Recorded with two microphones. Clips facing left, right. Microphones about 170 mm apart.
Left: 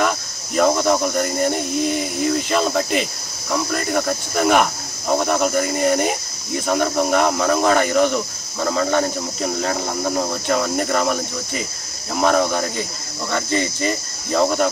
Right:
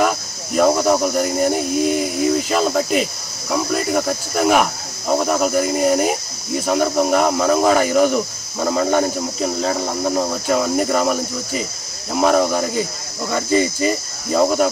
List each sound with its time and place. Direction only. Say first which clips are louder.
0.6 s speech: right 2 dB; 5° right (ahead or behind)